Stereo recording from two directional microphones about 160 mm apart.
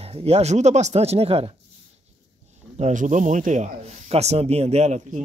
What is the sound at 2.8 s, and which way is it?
Speech, 50° right (ahead or behind).